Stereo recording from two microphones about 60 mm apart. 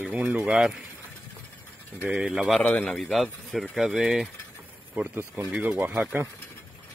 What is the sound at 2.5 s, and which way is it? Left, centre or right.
Speech, left.